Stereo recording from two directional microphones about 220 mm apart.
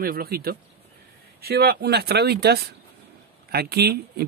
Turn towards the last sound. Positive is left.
turn(degrees=-45)  # may be behind; listen again after turning